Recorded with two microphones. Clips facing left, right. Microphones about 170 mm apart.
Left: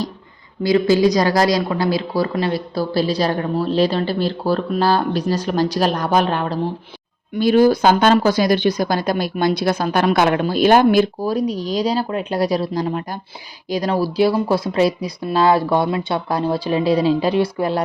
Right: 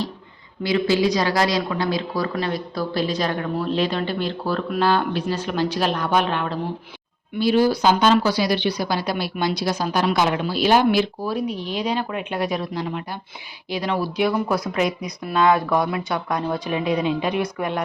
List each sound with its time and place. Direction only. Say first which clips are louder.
0.6 s speech: left 5 dB; 40° left (ahead or behind)
7.3 s speech: left 5 dB; 50° left (ahead or behind); by 17.8 s 35° left (ahead or behind)